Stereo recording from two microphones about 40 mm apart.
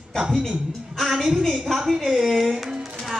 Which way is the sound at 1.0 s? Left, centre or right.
Centre.